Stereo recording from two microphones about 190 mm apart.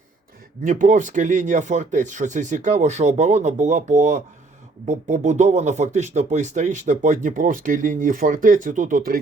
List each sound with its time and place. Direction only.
0.6 s speech: 40° right (ahead or behind)